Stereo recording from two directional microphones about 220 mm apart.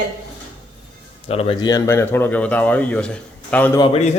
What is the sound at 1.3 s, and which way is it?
A man's voice, 25° left (ahead or behind).